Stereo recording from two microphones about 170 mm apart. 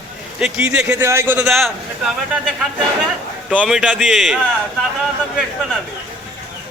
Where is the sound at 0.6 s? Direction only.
5° right (ahead or behind).